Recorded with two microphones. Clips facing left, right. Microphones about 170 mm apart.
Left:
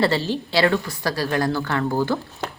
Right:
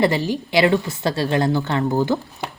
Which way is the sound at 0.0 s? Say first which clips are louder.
Right 2 dB; 15° right (ahead or behind).